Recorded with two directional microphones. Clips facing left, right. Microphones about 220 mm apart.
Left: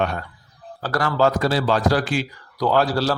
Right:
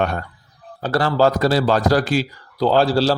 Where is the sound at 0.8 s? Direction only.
30° right (ahead or behind).